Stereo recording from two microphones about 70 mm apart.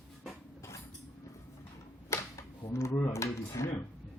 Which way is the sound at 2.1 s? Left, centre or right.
Left.